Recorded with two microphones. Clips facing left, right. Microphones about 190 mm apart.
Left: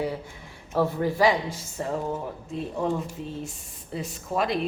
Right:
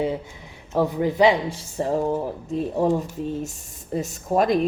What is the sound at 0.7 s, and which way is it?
Speech, 15° right (ahead or behind).